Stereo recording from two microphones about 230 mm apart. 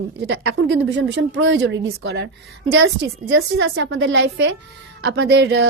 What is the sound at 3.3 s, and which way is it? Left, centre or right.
A woman's voice, right.